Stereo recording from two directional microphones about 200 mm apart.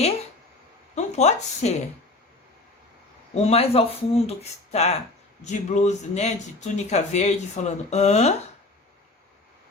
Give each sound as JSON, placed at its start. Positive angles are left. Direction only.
{"t": 0.9, "sound": "a woman's voice", "side_deg": 35}
{"t": 3.3, "sound": "speech", "side_deg": 30}